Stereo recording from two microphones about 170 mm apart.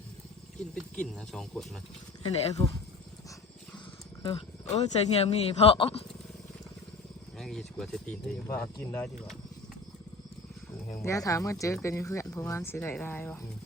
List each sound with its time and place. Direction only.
0.8 s speech: 5° left (ahead or behind)
2.6 s speech: 35° left (ahead or behind)
4.2 s speech: 35° left (ahead or behind)
7.3 s speech: centre (ahead or behind)
10.9 s speech: 15° left (ahead or behind)